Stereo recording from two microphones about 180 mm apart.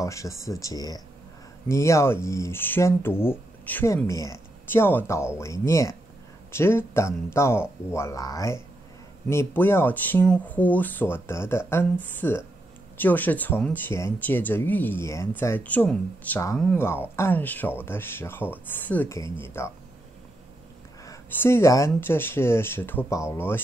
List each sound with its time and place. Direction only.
0.0 s speech: 15° left (ahead or behind)
21.0 s speech: 15° left (ahead or behind)